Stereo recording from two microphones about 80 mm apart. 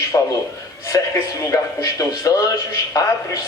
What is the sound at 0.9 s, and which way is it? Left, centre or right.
Music, left.